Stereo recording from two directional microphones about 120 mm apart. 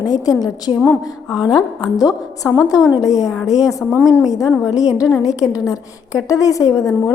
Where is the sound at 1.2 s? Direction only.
5° right (ahead or behind).